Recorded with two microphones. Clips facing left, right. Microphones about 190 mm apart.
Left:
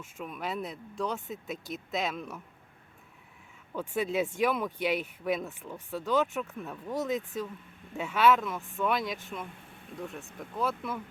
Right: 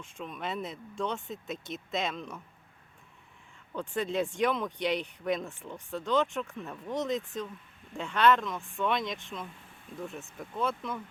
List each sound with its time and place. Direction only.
0.0 s speech: 5° left (ahead or behind)
3.8 s speech: 5° left (ahead or behind)